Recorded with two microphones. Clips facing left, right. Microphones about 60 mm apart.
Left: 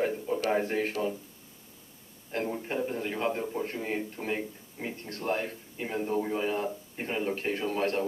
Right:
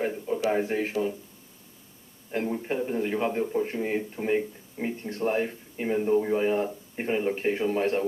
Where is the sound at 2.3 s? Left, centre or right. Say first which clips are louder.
Right 3 dB; centre.